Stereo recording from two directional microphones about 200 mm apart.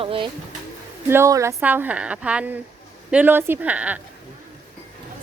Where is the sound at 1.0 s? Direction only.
15° right (ahead or behind).